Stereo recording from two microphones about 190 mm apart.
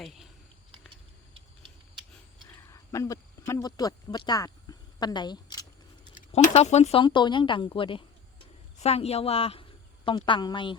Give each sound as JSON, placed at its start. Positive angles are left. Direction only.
{"t": 0.0, "sound": "speech", "side_deg": 0}
{"t": 2.6, "sound": "speech", "side_deg": 15}
{"t": 4.9, "sound": "a sound", "side_deg": 25}
{"t": 6.1, "sound": "speech", "side_deg": 40}
{"t": 7.0, "sound": "a woman's voice", "side_deg": 25}